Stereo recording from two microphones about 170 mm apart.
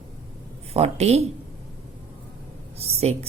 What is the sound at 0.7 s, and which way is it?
Speech, 40° right (ahead or behind).